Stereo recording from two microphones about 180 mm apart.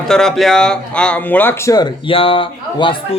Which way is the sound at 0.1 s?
5° left (ahead or behind).